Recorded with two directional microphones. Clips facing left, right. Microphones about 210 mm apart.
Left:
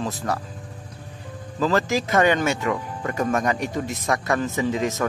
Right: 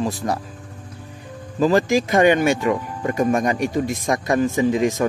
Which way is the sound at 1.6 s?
15° right (ahead or behind).